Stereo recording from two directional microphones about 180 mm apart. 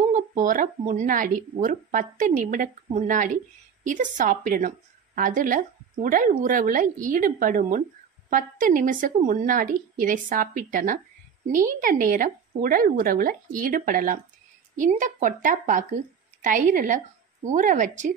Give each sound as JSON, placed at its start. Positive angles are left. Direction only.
{"t": 0.0, "sound": "a woman's voice", "side_deg": -45}